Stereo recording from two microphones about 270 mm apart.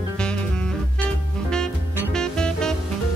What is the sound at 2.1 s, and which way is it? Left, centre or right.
Music, centre.